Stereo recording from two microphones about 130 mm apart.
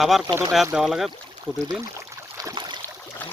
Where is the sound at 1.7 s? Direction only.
25° right (ahead or behind).